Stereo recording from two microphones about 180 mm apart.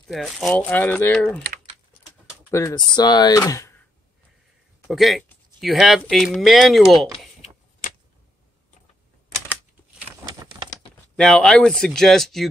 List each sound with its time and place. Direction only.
0.1 s speech: centre (ahead or behind)
2.5 s speech: 20° left (ahead or behind)
4.8 s speech: centre (ahead or behind)
11.1 s speech: 5° left (ahead or behind)